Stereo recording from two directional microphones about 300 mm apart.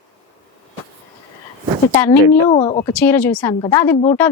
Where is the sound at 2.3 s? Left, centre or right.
Centre.